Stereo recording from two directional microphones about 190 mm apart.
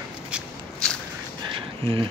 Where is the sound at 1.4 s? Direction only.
25° right (ahead or behind).